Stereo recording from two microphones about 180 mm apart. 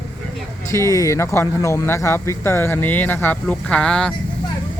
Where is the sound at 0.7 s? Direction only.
20° left (ahead or behind).